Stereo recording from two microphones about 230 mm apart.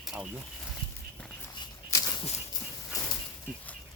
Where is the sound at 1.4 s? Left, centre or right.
Centre.